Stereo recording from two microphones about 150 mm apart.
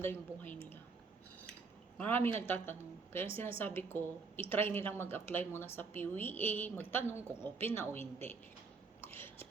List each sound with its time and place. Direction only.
0.0 s a woman's voice: 15° left (ahead or behind)
2.0 s a woman's voice: 15° left (ahead or behind)
7.2 s a woman's voice: 10° right (ahead or behind)
7.4 s a woman's voice: 15° left (ahead or behind)
9.0 s a sound: 15° left (ahead or behind)